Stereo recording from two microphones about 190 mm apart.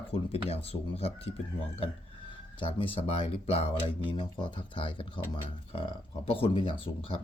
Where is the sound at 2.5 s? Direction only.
25° left (ahead or behind).